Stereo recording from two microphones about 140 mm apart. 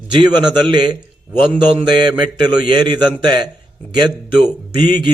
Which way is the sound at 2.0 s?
30° right (ahead or behind).